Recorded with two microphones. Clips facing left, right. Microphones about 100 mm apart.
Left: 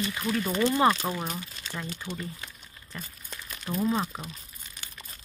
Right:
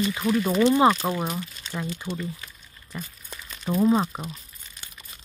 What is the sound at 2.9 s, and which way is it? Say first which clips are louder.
Speech: right 4 dB; 15° right (ahead or behind).